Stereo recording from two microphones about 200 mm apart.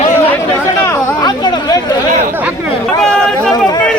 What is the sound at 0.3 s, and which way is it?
Chatter, 10° left (ahead or behind).